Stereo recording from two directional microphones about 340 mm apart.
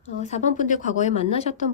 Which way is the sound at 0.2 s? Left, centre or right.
Centre.